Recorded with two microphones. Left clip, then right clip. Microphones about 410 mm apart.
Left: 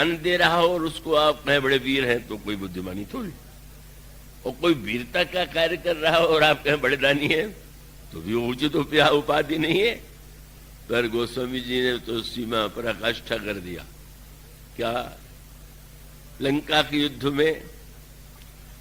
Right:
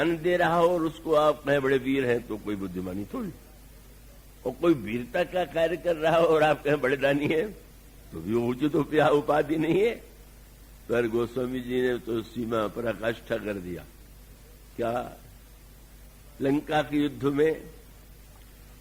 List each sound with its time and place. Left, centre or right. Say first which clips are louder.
0.0 s a man's voice: left 4 dB; right
4.4 s a man's voice: left 2 dB; right
16.4 s a man's voice: left 4 dB; right